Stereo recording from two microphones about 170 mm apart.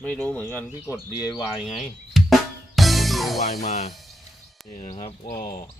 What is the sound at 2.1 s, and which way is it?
Drum, centre (ahead or behind).